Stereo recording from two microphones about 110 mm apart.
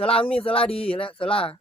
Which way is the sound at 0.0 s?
55° left (ahead or behind).